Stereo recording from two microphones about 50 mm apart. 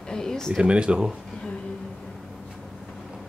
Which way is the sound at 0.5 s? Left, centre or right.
Right.